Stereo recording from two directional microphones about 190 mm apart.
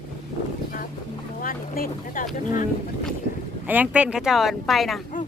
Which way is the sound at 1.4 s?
50° left (ahead or behind).